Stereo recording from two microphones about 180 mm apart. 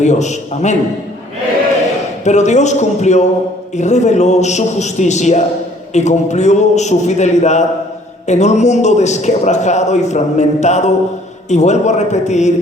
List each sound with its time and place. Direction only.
0.0 s a man's voice: 40° left (ahead or behind)
2.2 s a man's voice: 40° left (ahead or behind)